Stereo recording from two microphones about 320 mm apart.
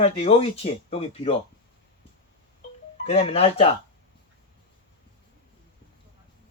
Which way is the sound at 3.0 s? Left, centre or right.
Centre.